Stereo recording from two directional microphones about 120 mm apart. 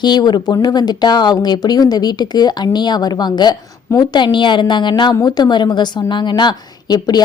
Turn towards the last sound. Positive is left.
turn(degrees=35)  # may be behind; listen again after turning